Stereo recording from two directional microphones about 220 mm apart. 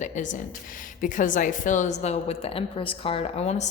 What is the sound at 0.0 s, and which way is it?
A woman's voice, 35° left (ahead or behind).